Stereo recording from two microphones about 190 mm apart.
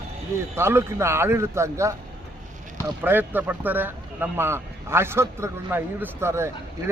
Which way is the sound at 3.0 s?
10° right (ahead or behind).